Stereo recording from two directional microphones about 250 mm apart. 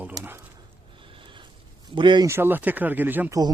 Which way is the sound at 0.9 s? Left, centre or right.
Centre.